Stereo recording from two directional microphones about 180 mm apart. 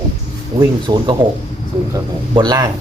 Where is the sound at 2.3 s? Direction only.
25° right (ahead or behind).